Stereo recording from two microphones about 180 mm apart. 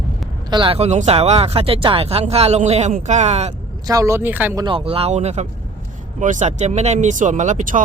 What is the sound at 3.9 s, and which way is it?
Speech, 20° right (ahead or behind).